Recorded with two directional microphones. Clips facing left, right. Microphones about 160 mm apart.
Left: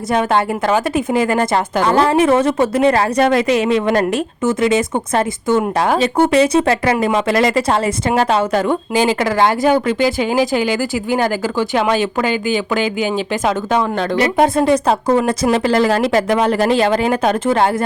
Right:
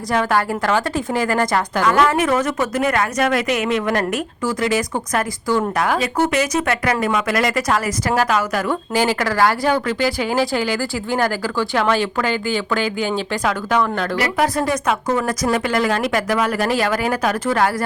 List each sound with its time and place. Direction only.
0.1 s a woman's voice: 20° left (ahead or behind)